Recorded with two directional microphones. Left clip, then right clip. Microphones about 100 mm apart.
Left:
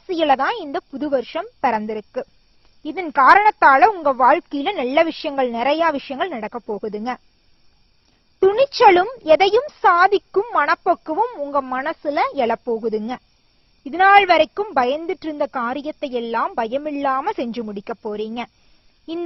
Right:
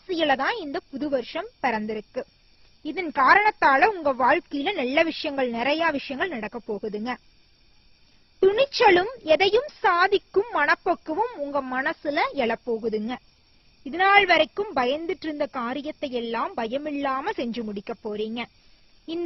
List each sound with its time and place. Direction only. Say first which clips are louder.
0.1 s a woman's voice: left 5 dB; 35° left (ahead or behind)
8.4 s a woman's voice: left 5 dB; 35° left (ahead or behind)
10.4 s speech: left 5 dB; centre (ahead or behind)
10.8 s speech: left 6 dB; 25° left (ahead or behind)
11.2 s speech: left 6 dB; centre (ahead or behind)
12.0 s a woman's voice: left 7 dB; 25° left (ahead or behind)